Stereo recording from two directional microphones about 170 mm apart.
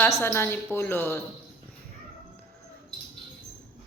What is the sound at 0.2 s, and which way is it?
Speech, 15° left (ahead or behind).